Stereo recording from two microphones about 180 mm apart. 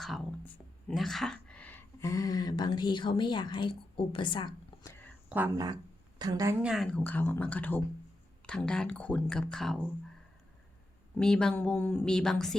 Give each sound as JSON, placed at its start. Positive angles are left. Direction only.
{"t": 0.0, "sound": "speech", "side_deg": 0}
{"t": 6.1, "sound": "a woman's voice", "side_deg": -20}
{"t": 6.6, "sound": "speech", "side_deg": 0}
{"t": 11.2, "sound": "speech", "side_deg": 5}